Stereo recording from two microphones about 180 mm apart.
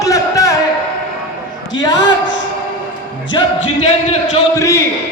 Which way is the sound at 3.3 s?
25° left (ahead or behind).